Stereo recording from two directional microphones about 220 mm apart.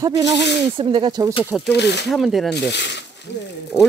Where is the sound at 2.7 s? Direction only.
50° left (ahead or behind).